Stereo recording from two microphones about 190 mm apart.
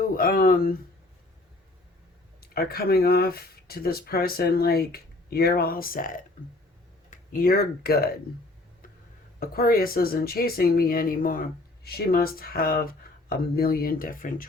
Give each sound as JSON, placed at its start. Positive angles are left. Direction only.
{"t": 0.2, "sound": "speech", "side_deg": 50}
{"t": 2.4, "sound": "speech", "side_deg": 55}
{"t": 9.4, "sound": "speech", "side_deg": 50}